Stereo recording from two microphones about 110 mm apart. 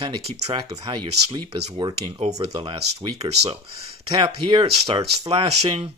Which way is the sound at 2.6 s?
50° right (ahead or behind).